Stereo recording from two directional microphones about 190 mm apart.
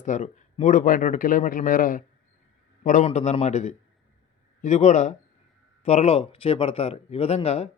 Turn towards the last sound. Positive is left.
turn(degrees=35)  # may be behind; listen again after turning